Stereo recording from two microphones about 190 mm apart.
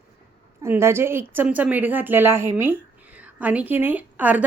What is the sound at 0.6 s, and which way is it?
Speech, 15° right (ahead or behind).